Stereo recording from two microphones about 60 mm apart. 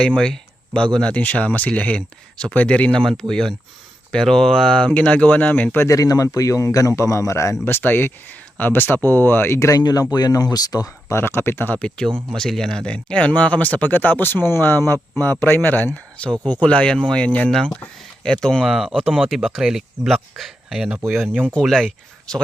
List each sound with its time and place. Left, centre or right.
0.2 s speech: centre
3.0 s speech: centre
5.1 s speech: left
5.9 s a man's voice: left
7.6 s speech: left
9.6 s speech: left
11.1 s speech: left
11.8 s speech: centre; by 16.0 s left
16.2 s speech: left
17.5 s speech: centre
18.6 s speech: centre
21.6 s speech: centre